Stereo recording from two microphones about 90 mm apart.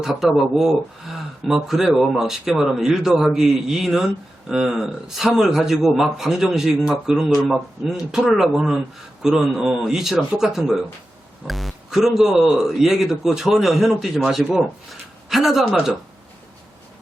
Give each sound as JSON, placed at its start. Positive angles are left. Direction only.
{"t": 0.0, "sound": "speech", "side_deg": -5}